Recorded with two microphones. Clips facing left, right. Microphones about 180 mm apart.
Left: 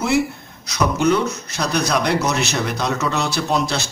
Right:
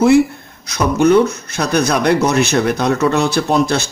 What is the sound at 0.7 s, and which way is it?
A man's voice, 55° right (ahead or behind).